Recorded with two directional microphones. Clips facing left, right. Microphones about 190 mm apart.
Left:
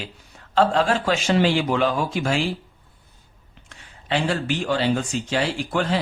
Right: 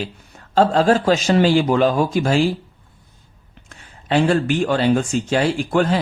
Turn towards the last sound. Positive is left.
turn(degrees=-45)  # may be behind; listen again after turning